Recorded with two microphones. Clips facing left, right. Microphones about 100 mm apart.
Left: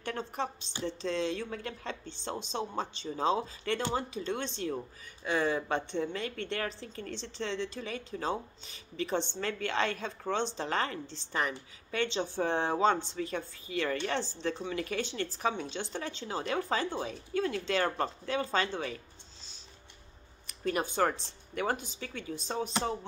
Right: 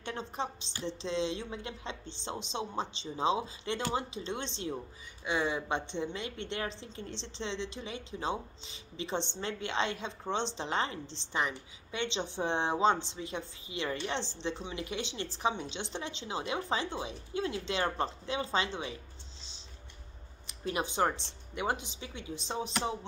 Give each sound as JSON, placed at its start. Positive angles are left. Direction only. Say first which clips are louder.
{"t": 0.0, "sound": "a woman's voice", "louder": "left 2 dB", "side_deg": -20}
{"t": 20.4, "sound": "a woman's voice", "louder": "left 2 dB", "side_deg": -20}